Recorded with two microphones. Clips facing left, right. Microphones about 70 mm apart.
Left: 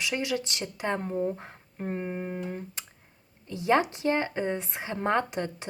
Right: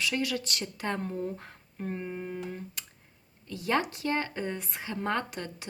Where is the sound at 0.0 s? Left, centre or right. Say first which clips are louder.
Left 1 dB; centre.